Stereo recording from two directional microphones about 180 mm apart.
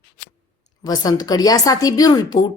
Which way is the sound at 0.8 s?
20° left (ahead or behind).